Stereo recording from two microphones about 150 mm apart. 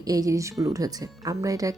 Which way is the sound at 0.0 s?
25° right (ahead or behind).